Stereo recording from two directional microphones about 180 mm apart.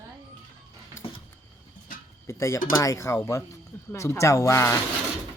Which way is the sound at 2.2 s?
15° left (ahead or behind).